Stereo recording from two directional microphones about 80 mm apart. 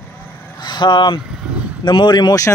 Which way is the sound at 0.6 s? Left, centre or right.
Left.